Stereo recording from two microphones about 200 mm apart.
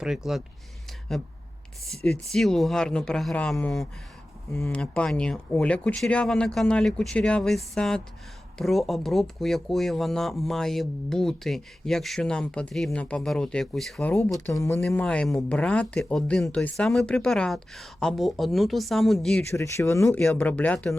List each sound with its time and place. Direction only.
0.0 s speech: centre (ahead or behind)
14.3 s speech: 15° left (ahead or behind)
14.8 s speech: 5° left (ahead or behind)
19.5 s speech: 15° left (ahead or behind)